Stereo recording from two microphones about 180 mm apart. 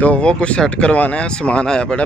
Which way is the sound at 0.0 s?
5° left (ahead or behind).